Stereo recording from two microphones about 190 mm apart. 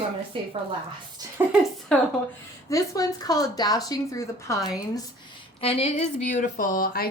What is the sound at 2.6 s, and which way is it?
Speech, 15° left (ahead or behind).